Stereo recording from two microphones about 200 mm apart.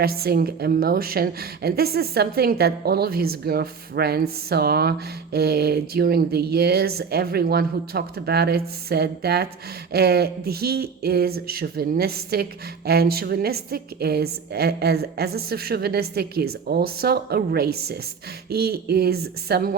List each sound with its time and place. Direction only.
0.0 s a woman's voice: 50° right (ahead or behind)